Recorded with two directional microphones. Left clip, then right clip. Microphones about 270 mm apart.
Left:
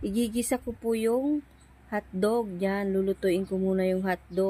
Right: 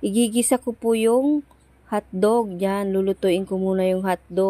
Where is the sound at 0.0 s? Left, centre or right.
Right.